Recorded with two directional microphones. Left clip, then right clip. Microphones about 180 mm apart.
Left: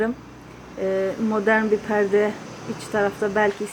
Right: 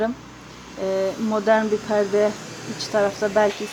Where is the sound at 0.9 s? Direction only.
Centre (ahead or behind).